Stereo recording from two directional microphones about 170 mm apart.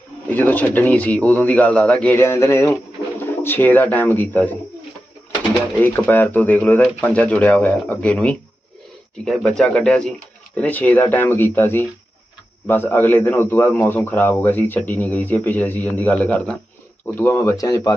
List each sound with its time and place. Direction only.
0.3 s a man's voice: 10° left (ahead or behind)
5.8 s a man's voice: 10° left (ahead or behind)